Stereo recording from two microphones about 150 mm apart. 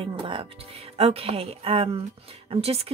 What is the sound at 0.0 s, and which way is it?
Speech, 35° right (ahead or behind).